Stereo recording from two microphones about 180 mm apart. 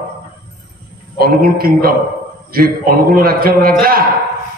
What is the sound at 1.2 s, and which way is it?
A man's voice, 55° right (ahead or behind).